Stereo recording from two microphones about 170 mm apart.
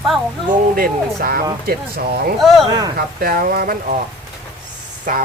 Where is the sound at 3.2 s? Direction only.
60° right (ahead or behind).